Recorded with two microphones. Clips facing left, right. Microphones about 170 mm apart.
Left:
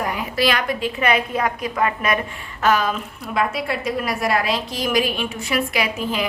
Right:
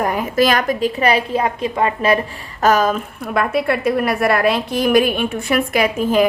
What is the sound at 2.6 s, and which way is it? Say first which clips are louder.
A woman's voice: right 4 dB; 40° right (ahead or behind).